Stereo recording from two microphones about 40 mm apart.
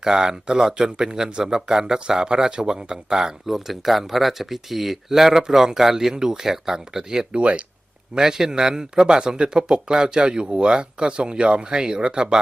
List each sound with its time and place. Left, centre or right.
0.0 s speech: centre
3.4 s speech: centre
7.3 s speech: right
8.1 s speech: centre